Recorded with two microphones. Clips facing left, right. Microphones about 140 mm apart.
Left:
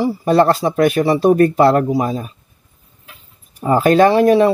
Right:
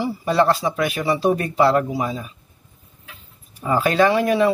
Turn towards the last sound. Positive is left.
turn(degrees=40)  # may be behind; listen again after turning